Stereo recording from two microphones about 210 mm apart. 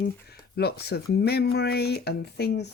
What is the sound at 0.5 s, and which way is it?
Speech, 50° left (ahead or behind).